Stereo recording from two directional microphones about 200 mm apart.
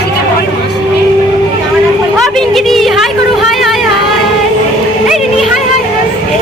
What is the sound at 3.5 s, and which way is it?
Music, centre (ahead or behind).